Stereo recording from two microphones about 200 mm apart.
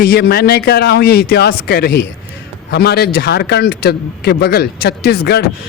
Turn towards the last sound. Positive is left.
turn(degrees=55)  # may be behind; listen again after turning